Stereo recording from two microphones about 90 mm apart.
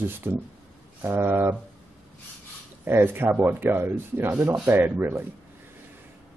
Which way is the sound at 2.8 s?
25° right (ahead or behind).